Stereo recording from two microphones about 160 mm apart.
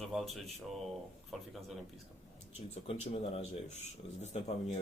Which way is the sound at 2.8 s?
40° left (ahead or behind).